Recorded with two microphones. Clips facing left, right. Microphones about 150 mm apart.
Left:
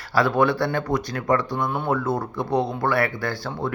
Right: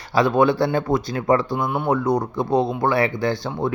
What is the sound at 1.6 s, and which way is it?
Speech, 5° right (ahead or behind).